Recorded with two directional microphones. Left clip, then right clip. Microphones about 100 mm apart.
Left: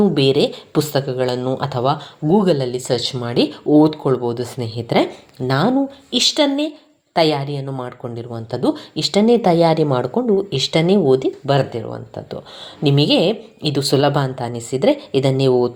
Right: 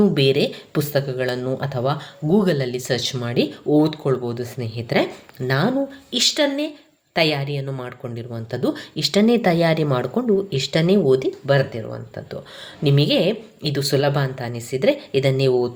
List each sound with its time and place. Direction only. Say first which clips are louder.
0.0 s speech: left 3 dB; 20° left (ahead or behind)
10.2 s speech: left 2 dB; 5° left (ahead or behind)
10.5 s speech: left 3 dB; 20° left (ahead or behind)
11.5 s speech: even; 30° left (ahead or behind)